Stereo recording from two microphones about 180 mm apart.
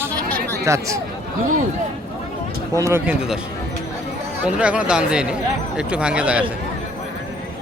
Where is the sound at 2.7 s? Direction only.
15° right (ahead or behind).